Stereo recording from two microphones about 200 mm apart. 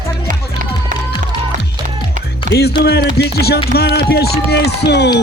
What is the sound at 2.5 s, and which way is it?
Speech, 55° left (ahead or behind).